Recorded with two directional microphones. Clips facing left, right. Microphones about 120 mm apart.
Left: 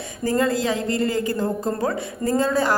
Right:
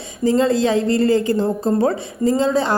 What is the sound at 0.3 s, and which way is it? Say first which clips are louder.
A woman's voice: right 5 dB; 25° right (ahead or behind).